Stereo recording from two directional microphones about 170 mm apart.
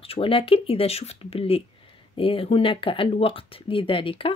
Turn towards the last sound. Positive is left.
turn(degrees=30)  # may be behind; listen again after turning